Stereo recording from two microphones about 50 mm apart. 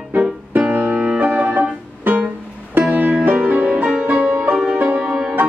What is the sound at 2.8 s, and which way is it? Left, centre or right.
Music, right.